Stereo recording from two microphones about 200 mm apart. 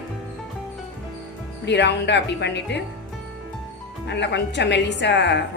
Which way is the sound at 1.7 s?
60° left (ahead or behind).